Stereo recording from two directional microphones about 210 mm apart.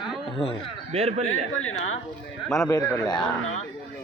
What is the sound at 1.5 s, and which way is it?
Speech, 75° left (ahead or behind).